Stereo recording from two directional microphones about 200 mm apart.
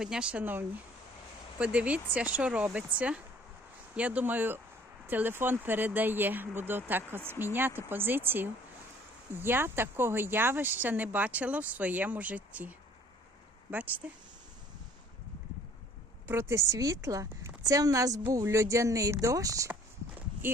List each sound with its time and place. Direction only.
0.0 s speech: 5° right (ahead or behind)
16.2 s speech: 10° right (ahead or behind)